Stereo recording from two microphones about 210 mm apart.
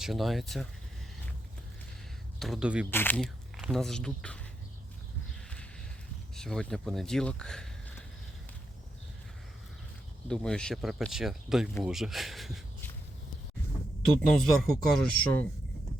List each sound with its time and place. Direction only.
0.0 s speech: centre (ahead or behind)
2.4 s speech: centre (ahead or behind)
2.9 s speech: 10° left (ahead or behind)
6.3 s speech: 5° left (ahead or behind)
10.2 s speech: 5° left (ahead or behind)
14.0 s speech: centre (ahead or behind)